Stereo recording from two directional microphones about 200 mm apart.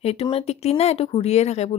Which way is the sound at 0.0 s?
30° left (ahead or behind).